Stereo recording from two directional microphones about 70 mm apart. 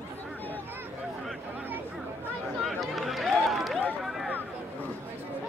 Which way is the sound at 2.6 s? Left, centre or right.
Centre.